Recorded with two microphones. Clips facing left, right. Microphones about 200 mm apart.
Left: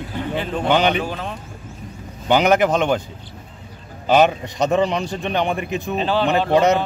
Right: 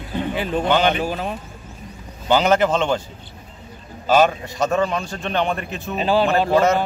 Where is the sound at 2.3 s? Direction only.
15° left (ahead or behind).